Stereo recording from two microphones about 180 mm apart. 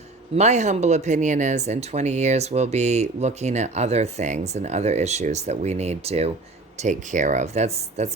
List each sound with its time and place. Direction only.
0.3 s speech: 40° right (ahead or behind)